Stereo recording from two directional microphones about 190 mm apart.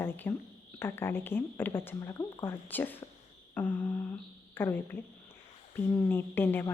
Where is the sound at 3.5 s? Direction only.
10° left (ahead or behind).